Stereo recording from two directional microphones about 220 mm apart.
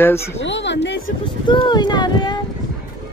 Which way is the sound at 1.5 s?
20° left (ahead or behind).